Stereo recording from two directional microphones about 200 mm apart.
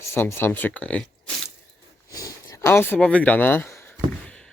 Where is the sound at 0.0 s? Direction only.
15° left (ahead or behind).